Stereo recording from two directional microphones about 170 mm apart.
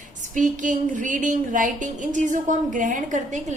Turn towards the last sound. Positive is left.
turn(degrees=-45)  # may be behind; listen again after turning